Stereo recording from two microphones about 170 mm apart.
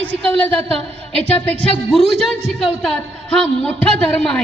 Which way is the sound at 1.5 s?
35° left (ahead or behind).